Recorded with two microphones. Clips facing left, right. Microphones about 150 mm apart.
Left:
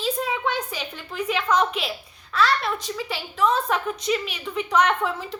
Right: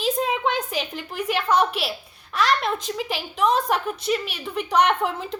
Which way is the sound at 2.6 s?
20° right (ahead or behind).